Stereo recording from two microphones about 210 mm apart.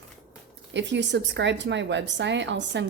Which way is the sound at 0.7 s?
55° right (ahead or behind).